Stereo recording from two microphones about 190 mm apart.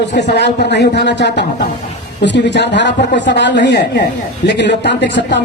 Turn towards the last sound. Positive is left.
turn(degrees=65)  # may be behind; listen again after turning